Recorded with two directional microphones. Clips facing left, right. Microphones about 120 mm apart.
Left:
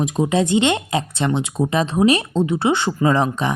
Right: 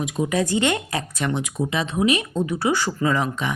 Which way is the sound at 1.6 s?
40° left (ahead or behind).